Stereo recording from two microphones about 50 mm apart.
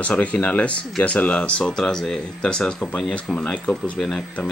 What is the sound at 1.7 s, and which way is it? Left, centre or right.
Speech, centre.